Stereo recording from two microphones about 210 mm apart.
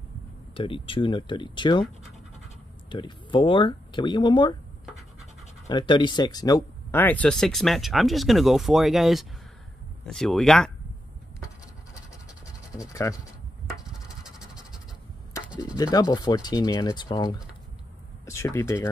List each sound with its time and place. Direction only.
0.6 s speech: 25° left (ahead or behind)
2.9 s speech: 20° left (ahead or behind)
5.7 s speech: 20° left (ahead or behind); by 10.7 s centre (ahead or behind)
12.7 s speech: 15° left (ahead or behind)
13.7 s scratch: centre (ahead or behind)
15.7 s speech: 15° left (ahead or behind)